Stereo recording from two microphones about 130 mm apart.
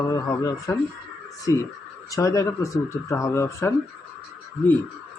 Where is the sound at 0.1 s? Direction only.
25° left (ahead or behind).